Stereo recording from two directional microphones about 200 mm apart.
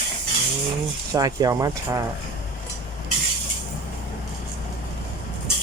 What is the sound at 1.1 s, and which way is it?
Speech, 20° right (ahead or behind).